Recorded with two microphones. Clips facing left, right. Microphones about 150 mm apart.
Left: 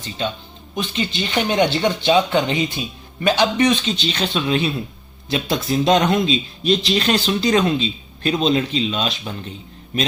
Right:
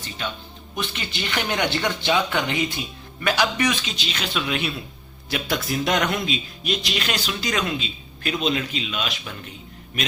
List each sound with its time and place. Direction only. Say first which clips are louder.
0.8 s speech: left 6 dB; 20° left (ahead or behind)